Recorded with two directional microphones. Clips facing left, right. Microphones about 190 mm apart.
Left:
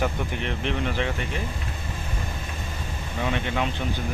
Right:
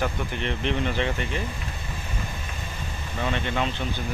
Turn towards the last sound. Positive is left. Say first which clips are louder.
# even
turn(degrees=10)  # may be behind; listen again after turning